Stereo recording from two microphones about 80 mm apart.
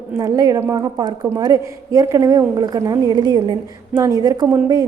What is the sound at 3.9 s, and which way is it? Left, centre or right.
Speech, right.